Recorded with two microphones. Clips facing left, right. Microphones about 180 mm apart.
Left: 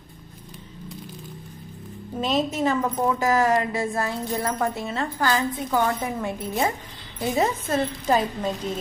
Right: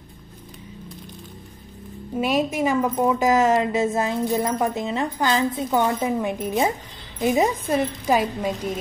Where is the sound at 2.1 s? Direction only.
10° right (ahead or behind).